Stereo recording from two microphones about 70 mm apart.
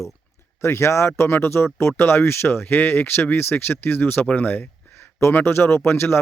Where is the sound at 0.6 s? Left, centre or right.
Left.